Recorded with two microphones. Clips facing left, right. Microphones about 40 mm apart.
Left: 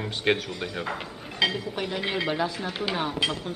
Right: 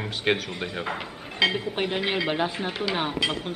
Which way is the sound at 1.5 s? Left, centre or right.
Right.